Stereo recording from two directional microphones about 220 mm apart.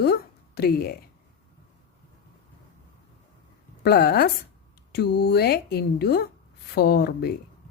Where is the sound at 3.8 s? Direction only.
45° left (ahead or behind).